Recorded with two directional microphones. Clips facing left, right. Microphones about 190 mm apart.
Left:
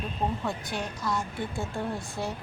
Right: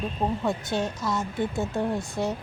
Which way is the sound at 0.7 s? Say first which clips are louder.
Right 4 dB; 25° right (ahead or behind).